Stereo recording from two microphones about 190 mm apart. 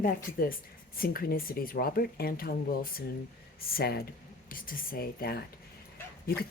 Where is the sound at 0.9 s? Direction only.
50° left (ahead or behind).